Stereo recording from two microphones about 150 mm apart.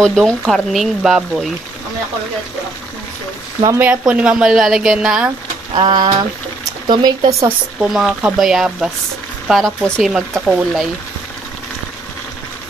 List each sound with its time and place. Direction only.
0.0 s speech: 5° left (ahead or behind)
3.6 s speech: 15° right (ahead or behind)
5.8 s speech: 25° right (ahead or behind)
7.9 s speech: centre (ahead or behind)